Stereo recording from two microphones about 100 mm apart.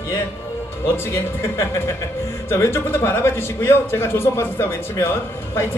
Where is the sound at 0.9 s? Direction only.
25° left (ahead or behind).